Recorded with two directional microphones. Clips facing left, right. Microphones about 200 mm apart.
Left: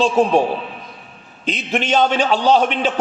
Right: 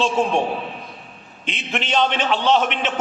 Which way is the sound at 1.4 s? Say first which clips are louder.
Left 6 dB; 40° left (ahead or behind).